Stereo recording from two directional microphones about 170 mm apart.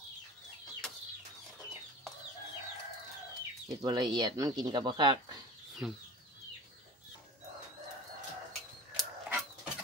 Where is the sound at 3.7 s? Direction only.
25° right (ahead or behind).